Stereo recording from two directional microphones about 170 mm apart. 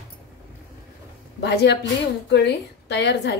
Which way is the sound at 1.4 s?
80° left.